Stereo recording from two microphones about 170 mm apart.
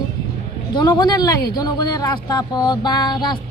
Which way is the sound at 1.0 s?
25° left (ahead or behind).